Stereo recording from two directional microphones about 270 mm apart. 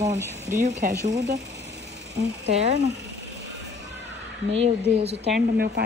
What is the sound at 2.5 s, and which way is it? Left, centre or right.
Speech, right.